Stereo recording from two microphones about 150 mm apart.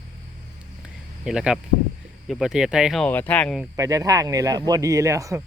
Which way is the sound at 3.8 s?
25° right (ahead or behind).